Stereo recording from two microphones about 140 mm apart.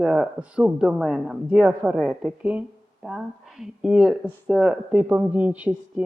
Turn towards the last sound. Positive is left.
turn(degrees=-10)  # may be behind; listen again after turning